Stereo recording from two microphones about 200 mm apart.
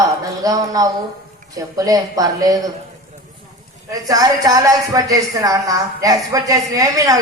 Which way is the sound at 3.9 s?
20° right (ahead or behind).